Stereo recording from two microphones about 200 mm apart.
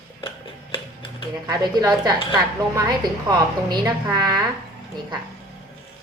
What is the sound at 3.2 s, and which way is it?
A woman's voice, 20° right (ahead or behind).